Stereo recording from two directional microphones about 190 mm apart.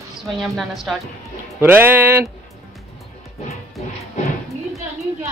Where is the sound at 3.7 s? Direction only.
35° left (ahead or behind).